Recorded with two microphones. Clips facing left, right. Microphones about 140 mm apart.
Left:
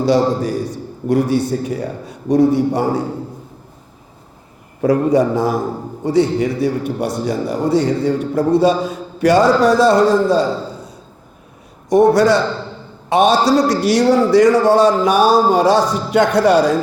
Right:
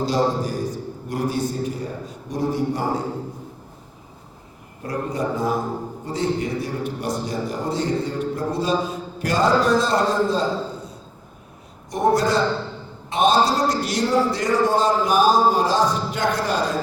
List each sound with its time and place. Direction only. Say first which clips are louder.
0.0 s a man's voice: left 6 dB; 70° left (ahead or behind)
4.8 s a man's voice: left 12 dB; 85° left